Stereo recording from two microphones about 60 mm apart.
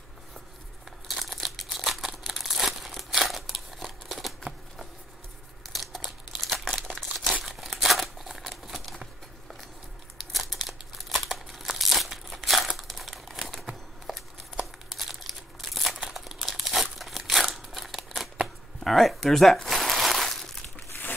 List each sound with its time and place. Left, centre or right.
1.0 s crumpling: centre
3.5 s scissors: centre
5.7 s crumpling: centre
10.1 s crumpling: centre
20.9 s a sound: left